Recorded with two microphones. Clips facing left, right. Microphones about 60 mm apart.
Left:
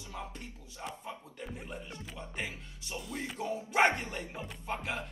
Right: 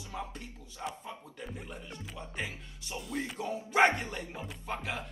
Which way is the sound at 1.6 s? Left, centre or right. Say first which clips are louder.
Left 1 dB; left.